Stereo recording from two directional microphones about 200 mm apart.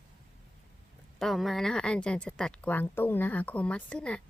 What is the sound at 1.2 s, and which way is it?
Speech, centre (ahead or behind).